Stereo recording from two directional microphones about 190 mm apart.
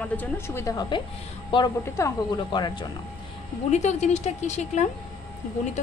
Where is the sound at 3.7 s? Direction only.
35° left (ahead or behind).